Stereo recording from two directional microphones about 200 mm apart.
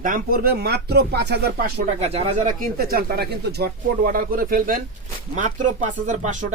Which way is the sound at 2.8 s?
50° right (ahead or behind).